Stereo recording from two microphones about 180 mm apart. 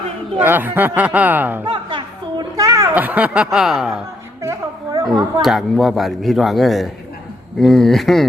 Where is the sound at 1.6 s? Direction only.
30° right (ahead or behind); by 4.0 s centre (ahead or behind).